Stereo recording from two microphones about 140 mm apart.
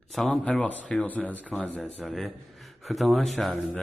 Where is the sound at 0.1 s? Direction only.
5° left (ahead or behind).